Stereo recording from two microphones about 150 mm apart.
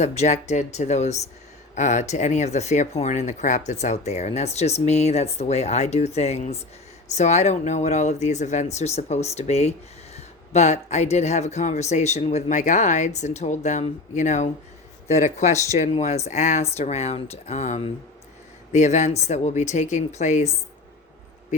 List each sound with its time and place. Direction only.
0.0 s speech: 50° left (ahead or behind)